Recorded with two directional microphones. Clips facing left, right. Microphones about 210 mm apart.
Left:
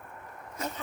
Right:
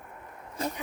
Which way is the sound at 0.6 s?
30° right (ahead or behind).